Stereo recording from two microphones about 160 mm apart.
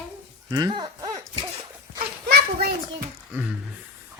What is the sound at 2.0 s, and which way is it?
Children playing, 80° right.